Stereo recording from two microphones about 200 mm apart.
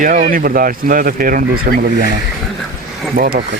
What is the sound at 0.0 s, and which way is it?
Speech, 45° right (ahead or behind).